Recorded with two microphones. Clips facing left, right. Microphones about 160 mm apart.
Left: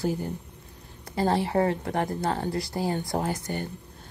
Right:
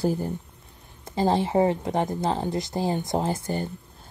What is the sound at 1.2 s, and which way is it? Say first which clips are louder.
A woman's voice: right 2 dB; 20° right (ahead or behind).